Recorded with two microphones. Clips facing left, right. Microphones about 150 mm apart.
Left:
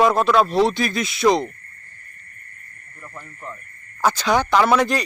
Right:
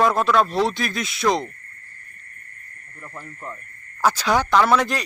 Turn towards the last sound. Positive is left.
turn(degrees=0)  # may be behind; listen again after turning